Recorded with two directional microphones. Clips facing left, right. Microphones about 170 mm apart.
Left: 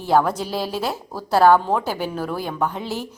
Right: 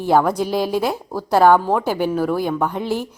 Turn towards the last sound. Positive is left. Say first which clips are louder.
# right 4 dB
turn(degrees=-15)  # may be behind; listen again after turning